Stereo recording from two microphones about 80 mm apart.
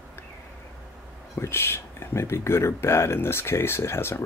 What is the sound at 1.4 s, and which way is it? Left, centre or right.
Speech, left.